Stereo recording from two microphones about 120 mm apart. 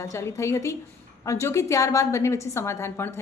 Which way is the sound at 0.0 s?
25° left (ahead or behind).